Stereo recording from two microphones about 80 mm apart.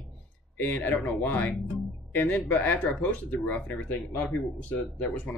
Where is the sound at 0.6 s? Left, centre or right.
Left.